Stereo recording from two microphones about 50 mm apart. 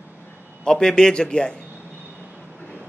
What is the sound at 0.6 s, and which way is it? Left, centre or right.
Speech, centre.